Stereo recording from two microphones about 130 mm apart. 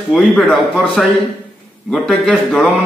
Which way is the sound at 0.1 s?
Centre (ahead or behind).